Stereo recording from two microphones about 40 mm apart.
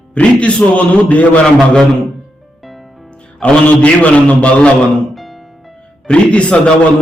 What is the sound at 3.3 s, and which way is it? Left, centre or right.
A man's voice, left.